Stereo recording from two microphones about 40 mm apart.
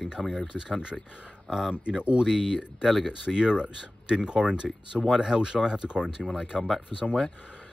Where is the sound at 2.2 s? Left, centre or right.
Centre.